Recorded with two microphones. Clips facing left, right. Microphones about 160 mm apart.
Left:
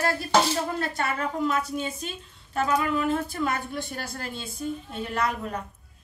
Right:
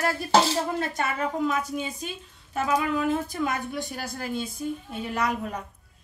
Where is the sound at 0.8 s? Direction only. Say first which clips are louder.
Right 1 dB; 20° right (ahead or behind).